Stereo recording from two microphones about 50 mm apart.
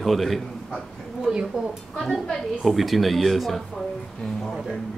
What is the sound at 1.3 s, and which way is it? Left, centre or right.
Speech, centre.